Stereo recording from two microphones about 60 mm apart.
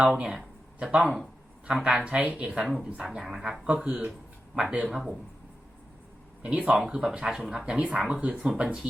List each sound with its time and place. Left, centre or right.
0.0 s speech: centre
3.7 s speech: right
6.4 s speech: centre
7.6 s speech: centre